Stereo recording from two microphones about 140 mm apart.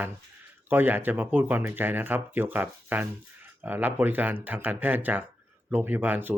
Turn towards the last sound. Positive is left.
turn(degrees=-15)  # may be behind; listen again after turning